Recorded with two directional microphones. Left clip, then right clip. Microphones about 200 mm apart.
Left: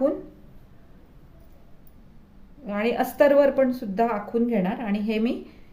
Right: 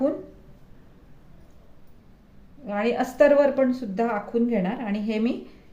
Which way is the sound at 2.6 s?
15° left (ahead or behind).